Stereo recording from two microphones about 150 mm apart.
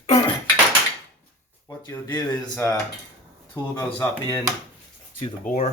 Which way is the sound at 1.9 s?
15° left (ahead or behind).